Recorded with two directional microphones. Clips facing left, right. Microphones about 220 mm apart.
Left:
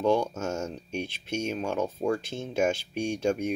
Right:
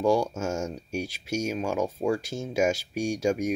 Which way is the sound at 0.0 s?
10° right (ahead or behind).